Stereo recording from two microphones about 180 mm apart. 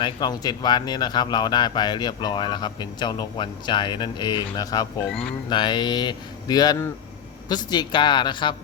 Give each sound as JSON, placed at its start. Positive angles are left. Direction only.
{"t": 0.0, "sound": "a man's voice", "side_deg": 20}